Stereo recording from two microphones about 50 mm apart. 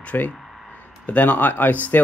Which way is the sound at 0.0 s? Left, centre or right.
Left.